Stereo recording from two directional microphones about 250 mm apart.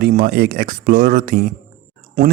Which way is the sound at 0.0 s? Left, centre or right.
Right.